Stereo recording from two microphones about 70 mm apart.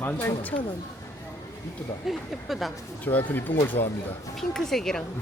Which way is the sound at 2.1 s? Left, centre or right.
Centre.